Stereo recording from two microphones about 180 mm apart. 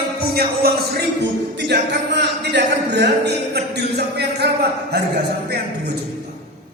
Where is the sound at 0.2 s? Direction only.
60° right (ahead or behind).